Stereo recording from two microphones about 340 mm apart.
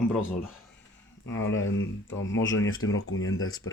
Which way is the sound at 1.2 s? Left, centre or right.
Left.